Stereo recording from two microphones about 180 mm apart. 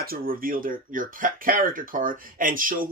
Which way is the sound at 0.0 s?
55° right (ahead or behind).